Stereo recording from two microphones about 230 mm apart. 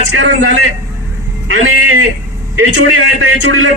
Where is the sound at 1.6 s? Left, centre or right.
Right.